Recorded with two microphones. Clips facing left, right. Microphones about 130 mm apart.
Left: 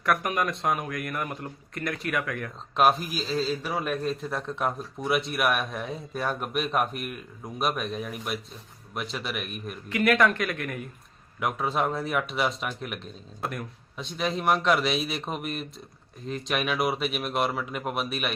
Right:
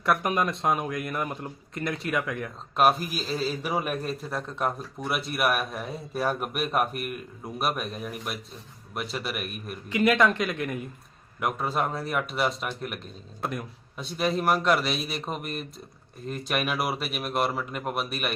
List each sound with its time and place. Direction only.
0.0 s speech: 25° right (ahead or behind)
2.7 s a man's voice: centre (ahead or behind)
4.3 s speech: centre (ahead or behind)
9.9 s speech: 20° right (ahead or behind)
11.3 s speech: centre (ahead or behind)